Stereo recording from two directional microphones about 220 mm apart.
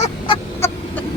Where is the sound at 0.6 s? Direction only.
10° left (ahead or behind).